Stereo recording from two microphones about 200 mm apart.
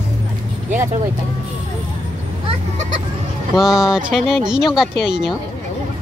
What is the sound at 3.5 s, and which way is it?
Speech, centre (ahead or behind).